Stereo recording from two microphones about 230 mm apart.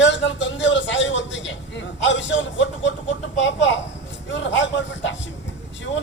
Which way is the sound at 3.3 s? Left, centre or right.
Left.